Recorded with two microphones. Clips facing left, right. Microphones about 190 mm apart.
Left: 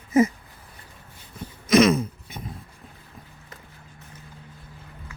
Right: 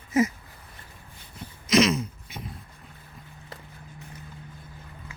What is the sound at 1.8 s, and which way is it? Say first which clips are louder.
Throat clearing: left 4 dB; 55° left (ahead or behind).